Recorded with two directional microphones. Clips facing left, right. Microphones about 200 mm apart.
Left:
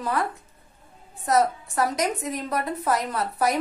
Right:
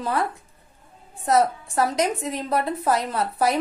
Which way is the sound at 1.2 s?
30° right (ahead or behind).